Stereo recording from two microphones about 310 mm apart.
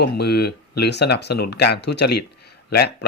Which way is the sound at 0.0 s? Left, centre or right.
Left.